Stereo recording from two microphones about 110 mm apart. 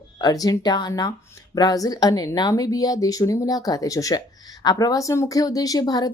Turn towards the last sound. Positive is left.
turn(degrees=35)  # may be behind; listen again after turning